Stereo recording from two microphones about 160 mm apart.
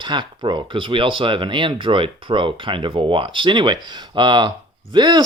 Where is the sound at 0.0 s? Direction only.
30° right (ahead or behind).